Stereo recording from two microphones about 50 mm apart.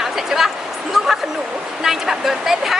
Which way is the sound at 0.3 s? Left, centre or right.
Centre.